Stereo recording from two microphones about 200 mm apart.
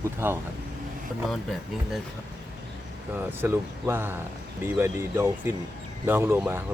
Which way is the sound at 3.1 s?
10° right (ahead or behind).